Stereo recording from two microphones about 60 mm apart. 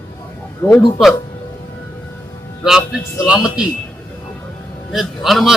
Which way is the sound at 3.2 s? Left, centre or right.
Centre.